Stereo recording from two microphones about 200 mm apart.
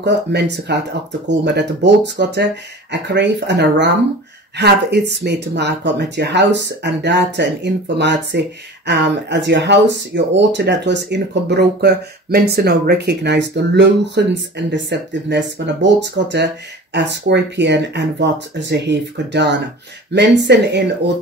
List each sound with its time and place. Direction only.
0.0 s speech: 55° right (ahead or behind)